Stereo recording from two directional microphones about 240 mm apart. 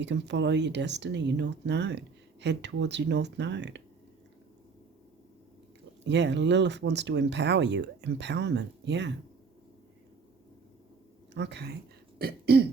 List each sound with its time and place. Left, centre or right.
0.0 s speech: right
6.1 s speech: right
11.3 s speech: right
12.2 s throat clearing: right